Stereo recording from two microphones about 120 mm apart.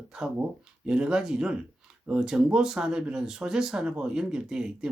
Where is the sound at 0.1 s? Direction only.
5° right (ahead or behind).